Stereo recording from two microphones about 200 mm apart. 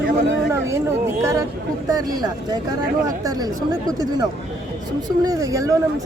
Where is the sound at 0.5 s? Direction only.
15° right (ahead or behind).